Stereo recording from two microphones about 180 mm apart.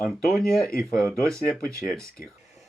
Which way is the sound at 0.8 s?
5° left (ahead or behind).